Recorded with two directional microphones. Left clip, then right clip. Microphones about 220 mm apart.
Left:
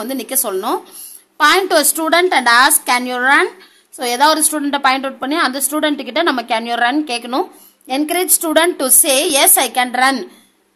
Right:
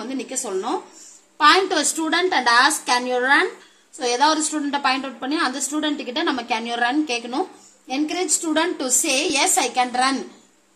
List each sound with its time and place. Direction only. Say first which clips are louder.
0.0 s a woman's voice: left 7 dB; 35° left (ahead or behind)